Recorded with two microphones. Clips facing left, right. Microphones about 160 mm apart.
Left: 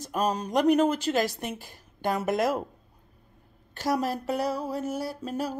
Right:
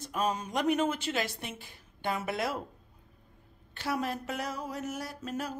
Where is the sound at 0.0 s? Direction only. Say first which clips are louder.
Left 4 dB; 40° left (ahead or behind).